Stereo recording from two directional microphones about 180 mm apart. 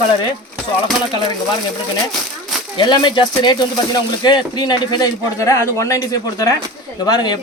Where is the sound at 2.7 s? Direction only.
25° left (ahead or behind).